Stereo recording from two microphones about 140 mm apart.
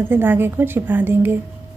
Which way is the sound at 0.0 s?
15° right (ahead or behind).